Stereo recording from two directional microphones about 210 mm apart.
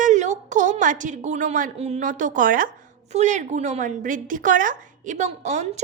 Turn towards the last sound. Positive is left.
turn(degrees=-35)  # may be behind; listen again after turning